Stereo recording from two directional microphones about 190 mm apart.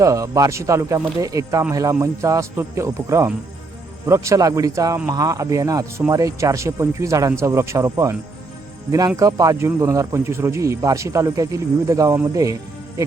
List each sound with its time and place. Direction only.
0.0 s speech: 15° right (ahead or behind)